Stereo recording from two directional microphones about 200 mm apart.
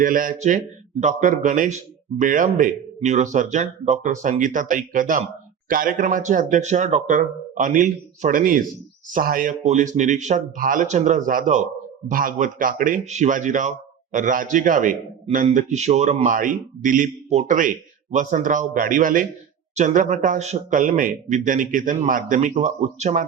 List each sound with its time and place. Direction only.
0.0 s speech: 40° right (ahead or behind)